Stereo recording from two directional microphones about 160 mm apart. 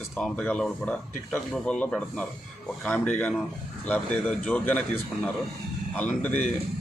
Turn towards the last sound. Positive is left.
turn(degrees=10)  # may be behind; listen again after turning